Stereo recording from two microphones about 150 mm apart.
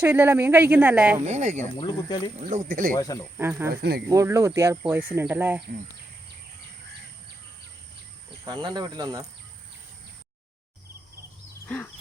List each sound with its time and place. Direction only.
0.0 s speech: 15° right (ahead or behind)
1.3 s speech: 55° right (ahead or behind)
2.0 s speech: 30° left (ahead or behind)
2.5 s speech: 65° right (ahead or behind)
3.0 s speech: 25° left (ahead or behind)
3.3 s speech: 15° right (ahead or behind)
3.7 s speech: 90° right
4.1 s speech: 20° right (ahead or behind)
8.4 s speech: 30° right (ahead or behind)